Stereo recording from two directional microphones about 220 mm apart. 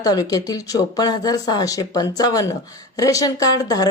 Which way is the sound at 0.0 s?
15° left (ahead or behind).